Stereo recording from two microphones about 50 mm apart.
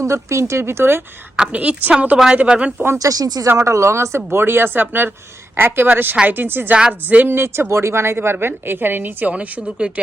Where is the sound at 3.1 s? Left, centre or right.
Right.